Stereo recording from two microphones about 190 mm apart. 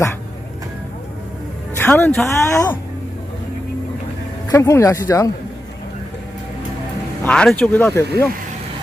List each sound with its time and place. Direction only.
1.8 s speech: 10° left (ahead or behind)
4.4 s speech: 15° left (ahead or behind)
7.3 s speech: 5° left (ahead or behind)